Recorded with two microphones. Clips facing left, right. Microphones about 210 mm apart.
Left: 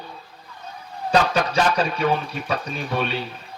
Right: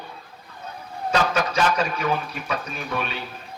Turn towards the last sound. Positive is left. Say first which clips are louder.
# left 3 dB
turn(degrees=30)  # may be behind; listen again after turning